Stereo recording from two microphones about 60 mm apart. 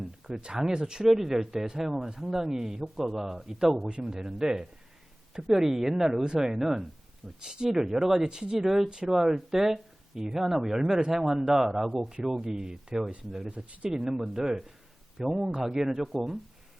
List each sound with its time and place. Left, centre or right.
0.0 s speech: centre